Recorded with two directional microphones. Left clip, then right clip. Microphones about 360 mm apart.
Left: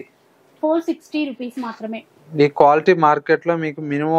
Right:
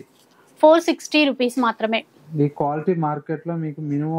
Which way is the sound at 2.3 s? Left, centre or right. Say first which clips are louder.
Left 9 dB; centre.